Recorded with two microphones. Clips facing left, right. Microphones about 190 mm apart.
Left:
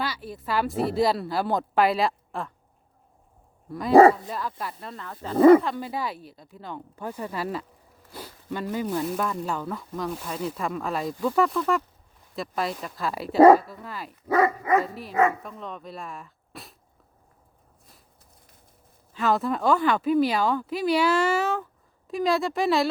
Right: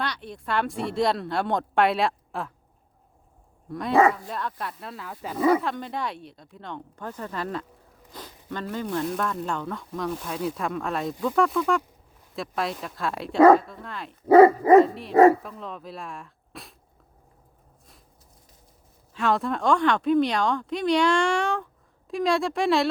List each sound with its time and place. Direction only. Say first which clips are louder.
0.0 s speech: even; 5° left (ahead or behind)
3.7 s speech: left 1 dB; centre (ahead or behind)
3.9 s speech: left 6 dB; 35° left (ahead or behind)
4.3 s speech: even; centre (ahead or behind)
5.4 s speech: left 8 dB; 55° left (ahead or behind)
5.6 s speech: even; 5° left (ahead or behind)
14.3 s dog: right 9 dB; 30° right (ahead or behind)
15.4 s speech: even; centre (ahead or behind)
19.1 s speech: left 1 dB; centre (ahead or behind)